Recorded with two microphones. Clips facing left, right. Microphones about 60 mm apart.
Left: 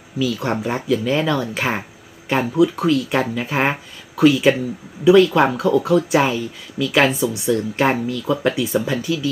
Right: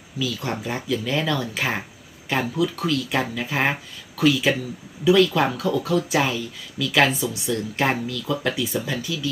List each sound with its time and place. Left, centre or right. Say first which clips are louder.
0.2 s speech: left 6 dB; left